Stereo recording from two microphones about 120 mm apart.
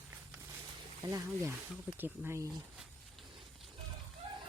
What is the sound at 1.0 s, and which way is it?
Speech, 25° right (ahead or behind).